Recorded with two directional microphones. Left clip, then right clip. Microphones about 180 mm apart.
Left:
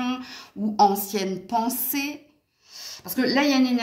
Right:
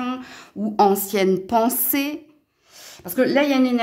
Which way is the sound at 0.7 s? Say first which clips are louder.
Right 3 dB; 55° right (ahead or behind).